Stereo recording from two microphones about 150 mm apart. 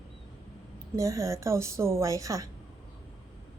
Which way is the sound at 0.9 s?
20° right (ahead or behind).